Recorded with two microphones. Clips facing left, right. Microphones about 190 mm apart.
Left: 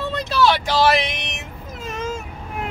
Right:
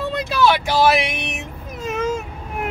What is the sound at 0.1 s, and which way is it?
Speech, 10° right (ahead or behind).